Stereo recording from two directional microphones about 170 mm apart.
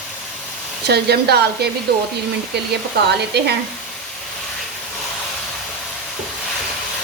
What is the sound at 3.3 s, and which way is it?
Speech, 75° right (ahead or behind).